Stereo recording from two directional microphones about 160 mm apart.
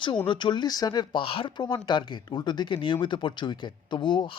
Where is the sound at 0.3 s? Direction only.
30° left (ahead or behind).